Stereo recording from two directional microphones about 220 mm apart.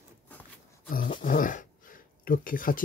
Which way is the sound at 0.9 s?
40° left (ahead or behind).